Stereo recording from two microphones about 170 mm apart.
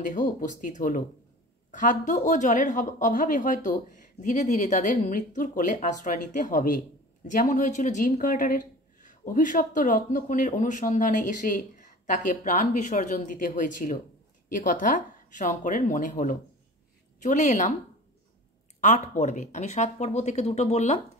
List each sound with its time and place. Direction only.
0.0 s speech: 50° left (ahead or behind)
18.8 s speech: 45° left (ahead or behind)